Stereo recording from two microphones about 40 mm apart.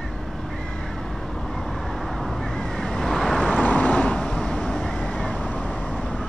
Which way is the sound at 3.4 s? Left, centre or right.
Left.